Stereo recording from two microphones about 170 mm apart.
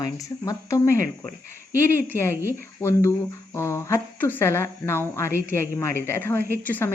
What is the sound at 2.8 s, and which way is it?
Speech, 15° left (ahead or behind).